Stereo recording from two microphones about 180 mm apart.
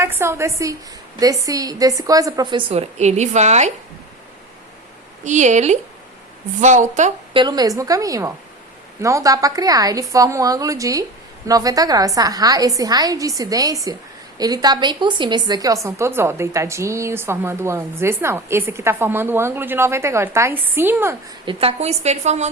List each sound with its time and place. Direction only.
0.0 s a woman's voice: 15° right (ahead or behind); by 3.7 s 40° right (ahead or behind)
5.2 s a woman's voice: 40° right (ahead or behind)
7.3 s a woman's voice: 20° right (ahead or behind)
21.4 s a woman's voice: 35° right (ahead or behind)